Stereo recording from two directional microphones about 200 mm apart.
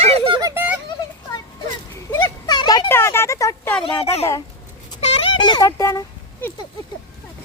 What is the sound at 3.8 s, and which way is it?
Speech, 25° left (ahead or behind).